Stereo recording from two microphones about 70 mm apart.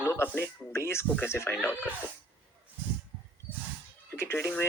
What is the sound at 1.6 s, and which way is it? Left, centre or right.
Speech, left.